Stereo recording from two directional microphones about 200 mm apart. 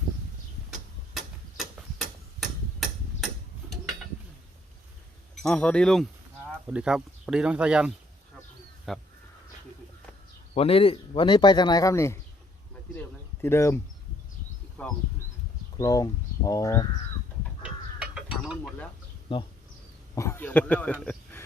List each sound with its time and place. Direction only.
0.7 s tick-tock: centre (ahead or behind)
5.3 s speech: 5° left (ahead or behind)
10.5 s speech: 30° left (ahead or behind); by 12.2 s 15° left (ahead or behind)
13.4 s speech: 15° left (ahead or behind)
14.8 s speech: 10° left (ahead or behind)
17.6 s a sound: 5° right (ahead or behind)
19.3 s speech: 25° left (ahead or behind)
20.1 s speech: 10° left (ahead or behind)
21.0 s a sound: 5° left (ahead or behind)